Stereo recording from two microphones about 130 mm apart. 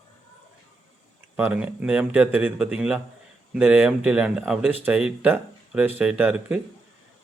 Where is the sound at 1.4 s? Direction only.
10° right (ahead or behind).